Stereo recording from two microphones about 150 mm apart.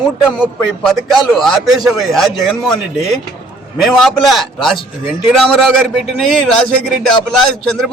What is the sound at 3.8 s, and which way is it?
A man's voice, centre (ahead or behind).